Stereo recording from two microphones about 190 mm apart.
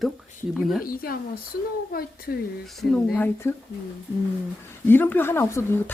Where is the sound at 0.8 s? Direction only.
50° left (ahead or behind).